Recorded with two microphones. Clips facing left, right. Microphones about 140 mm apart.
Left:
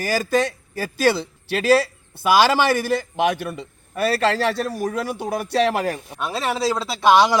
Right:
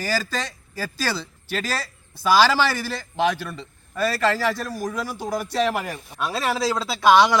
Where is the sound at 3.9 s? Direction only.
65° left (ahead or behind).